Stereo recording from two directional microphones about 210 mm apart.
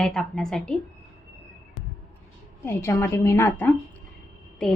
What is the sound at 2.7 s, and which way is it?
A woman's voice, 10° left (ahead or behind).